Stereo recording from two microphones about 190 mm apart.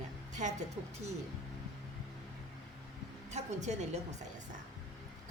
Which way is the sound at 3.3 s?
40° right (ahead or behind).